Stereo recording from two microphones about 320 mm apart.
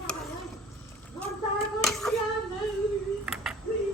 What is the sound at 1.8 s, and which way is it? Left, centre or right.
Child singing, centre.